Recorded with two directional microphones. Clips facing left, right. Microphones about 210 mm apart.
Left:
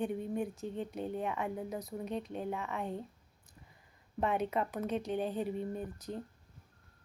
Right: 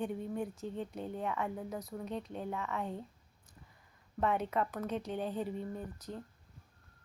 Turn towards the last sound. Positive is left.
turn(degrees=20)  # may be behind; listen again after turning